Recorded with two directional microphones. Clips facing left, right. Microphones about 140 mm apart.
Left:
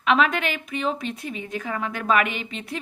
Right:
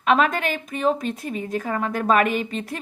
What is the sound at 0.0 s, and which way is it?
Speech, 40° right (ahead or behind).